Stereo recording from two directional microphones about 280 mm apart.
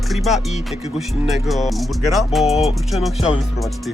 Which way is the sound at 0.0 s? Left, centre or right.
Centre.